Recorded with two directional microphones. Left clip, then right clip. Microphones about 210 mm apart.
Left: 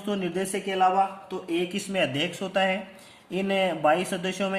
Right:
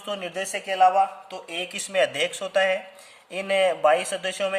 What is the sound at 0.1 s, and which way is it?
A man's voice, 45° right (ahead or behind).